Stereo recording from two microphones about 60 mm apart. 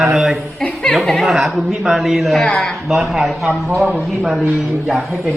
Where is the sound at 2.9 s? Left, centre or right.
Centre.